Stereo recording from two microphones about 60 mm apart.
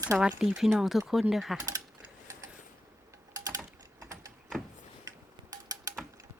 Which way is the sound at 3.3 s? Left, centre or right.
Right.